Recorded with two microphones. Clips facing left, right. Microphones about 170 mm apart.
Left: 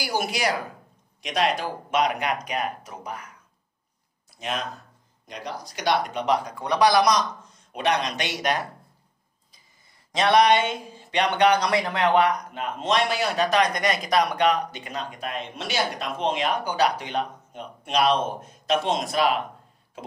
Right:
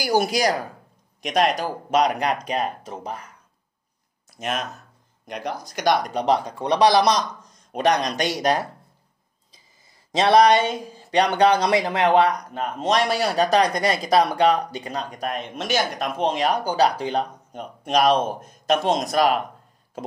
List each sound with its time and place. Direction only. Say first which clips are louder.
0.0 s speech: right 6 dB; 40° right (ahead or behind)
4.3 s a sound: right 3 dB; 50° right (ahead or behind)
5.2 s speech: right 5 dB; 55° right (ahead or behind); by 7.2 s 30° right (ahead or behind)
7.7 s speech: right 4 dB; 40° right (ahead or behind)
10.1 s speech: right 3 dB; 30° right (ahead or behind)